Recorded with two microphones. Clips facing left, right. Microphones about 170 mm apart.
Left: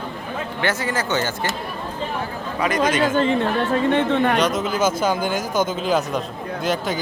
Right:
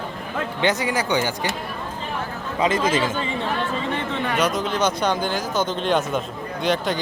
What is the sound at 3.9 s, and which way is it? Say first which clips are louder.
Speech: left 7 dB; 60° left (ahead or behind).